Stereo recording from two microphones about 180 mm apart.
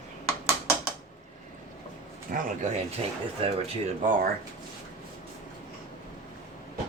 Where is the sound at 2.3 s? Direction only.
50° right (ahead or behind).